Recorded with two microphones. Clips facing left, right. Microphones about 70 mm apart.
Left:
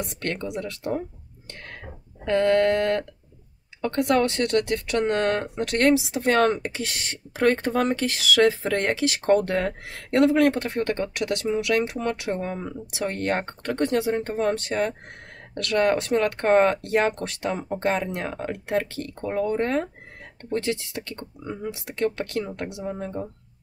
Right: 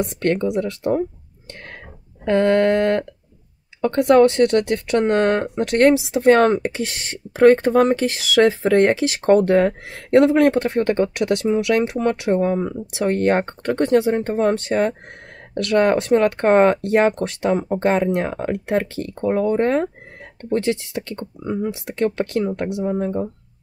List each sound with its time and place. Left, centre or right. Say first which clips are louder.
0.0 s speech: right 10 dB; right
2.2 s speech: right 4 dB; right